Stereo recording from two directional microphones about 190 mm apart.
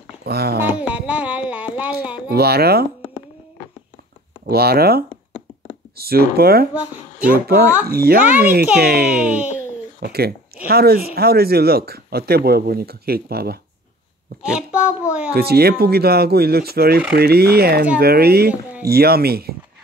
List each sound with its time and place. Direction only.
0.2 s speech: 55° right (ahead or behind)
0.7 s a sound: 5° right (ahead or behind)
2.2 s speech: 55° right (ahead or behind)
4.5 s speech: 55° right (ahead or behind)
6.7 s speech: 5° right (ahead or behind)
7.9 s speech: 55° right (ahead or behind)
8.2 s speech: 10° right (ahead or behind)
8.7 s speech: 55° right (ahead or behind)
14.4 s a sound: 5° right (ahead or behind)
15.3 s speech: 55° right (ahead or behind)
18.5 s speech: 10° right (ahead or behind)
18.9 s speech: 55° right (ahead or behind)